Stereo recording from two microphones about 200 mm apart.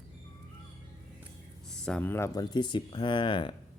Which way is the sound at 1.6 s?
5° left (ahead or behind).